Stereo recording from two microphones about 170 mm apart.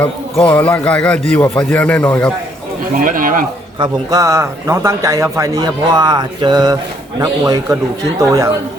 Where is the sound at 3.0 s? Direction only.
55° right (ahead or behind).